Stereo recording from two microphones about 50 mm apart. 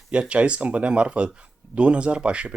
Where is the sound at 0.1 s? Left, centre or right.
Right.